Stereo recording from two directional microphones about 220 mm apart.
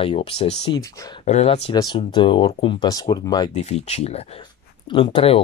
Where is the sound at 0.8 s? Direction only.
15° left (ahead or behind).